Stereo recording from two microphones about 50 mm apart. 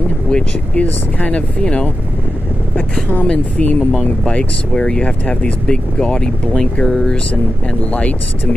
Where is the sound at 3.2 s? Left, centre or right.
Left.